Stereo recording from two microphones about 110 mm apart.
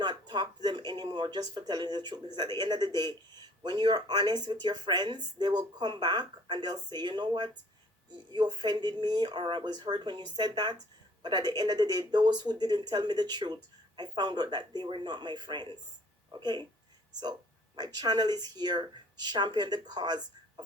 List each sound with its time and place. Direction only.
0.0 s speech: 45° right (ahead or behind)
17.7 s speech: 40° right (ahead or behind)